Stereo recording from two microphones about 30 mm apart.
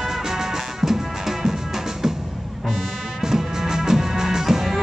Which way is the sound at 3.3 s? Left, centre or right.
Centre.